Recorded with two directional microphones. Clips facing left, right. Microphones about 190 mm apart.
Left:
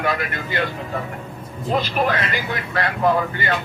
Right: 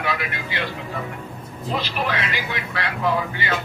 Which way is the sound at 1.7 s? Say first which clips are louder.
Left 5 dB; 50° left (ahead or behind).